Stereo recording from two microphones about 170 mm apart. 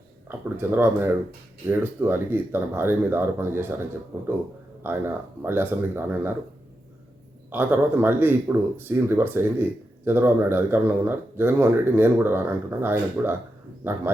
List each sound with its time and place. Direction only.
0.3 s speech: 10° right (ahead or behind)
7.5 s speech: 10° right (ahead or behind)